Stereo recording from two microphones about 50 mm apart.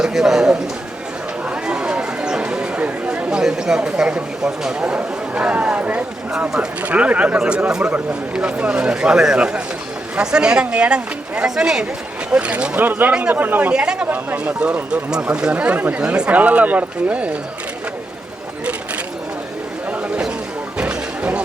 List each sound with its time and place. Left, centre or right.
0.0 s speech: centre
1.6 s a sound: centre
3.4 s a woman's voice: centre
12.7 s speech: right
13.7 s speech: centre
14.1 s speech: right
14.6 s a woman's voice: centre; by 16.0 s right
16.0 s a woman's voice: centre
20.7 s music: centre